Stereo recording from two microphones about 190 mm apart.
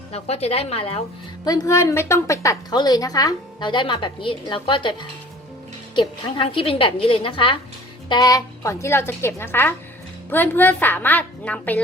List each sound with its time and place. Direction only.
0.1 s a woman's voice: 35° left (ahead or behind)
1.5 s a woman's voice: 15° left (ahead or behind)